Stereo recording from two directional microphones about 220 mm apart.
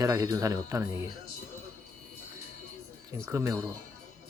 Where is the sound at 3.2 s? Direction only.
10° right (ahead or behind).